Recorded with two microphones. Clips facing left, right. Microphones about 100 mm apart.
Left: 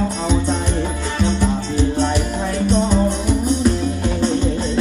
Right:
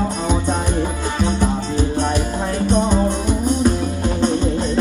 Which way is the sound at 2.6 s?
15° right (ahead or behind).